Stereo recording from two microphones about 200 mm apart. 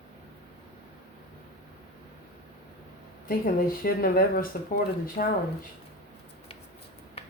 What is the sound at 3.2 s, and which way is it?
Speech, 45° left (ahead or behind).